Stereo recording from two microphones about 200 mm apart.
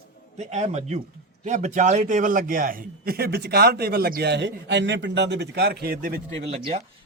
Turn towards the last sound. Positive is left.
turn(degrees=-35)  # may be behind; listen again after turning